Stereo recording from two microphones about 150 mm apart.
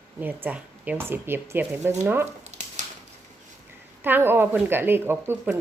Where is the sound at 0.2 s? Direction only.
15° right (ahead or behind).